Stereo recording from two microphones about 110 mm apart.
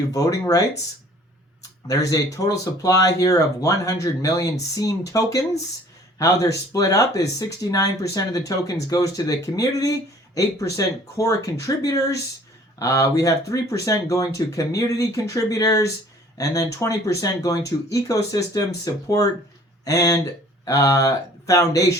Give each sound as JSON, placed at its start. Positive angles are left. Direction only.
{"t": 0.1, "sound": "speech", "side_deg": 30}
{"t": 1.9, "sound": "speech", "side_deg": 30}